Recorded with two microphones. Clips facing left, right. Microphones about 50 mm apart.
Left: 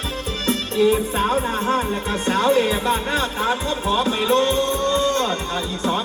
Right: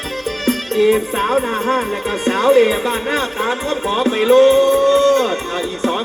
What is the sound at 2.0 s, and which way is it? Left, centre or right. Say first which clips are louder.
Speech: right 6 dB; right.